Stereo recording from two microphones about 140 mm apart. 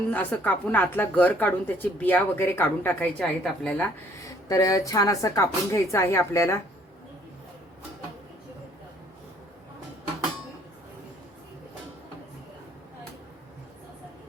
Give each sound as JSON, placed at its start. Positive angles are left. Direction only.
{"t": 0.1, "sound": "a woman's voice", "side_deg": 10}
{"t": 4.4, "sound": "speech", "side_deg": 25}